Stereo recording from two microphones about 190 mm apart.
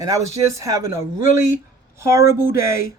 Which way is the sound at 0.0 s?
15° right (ahead or behind).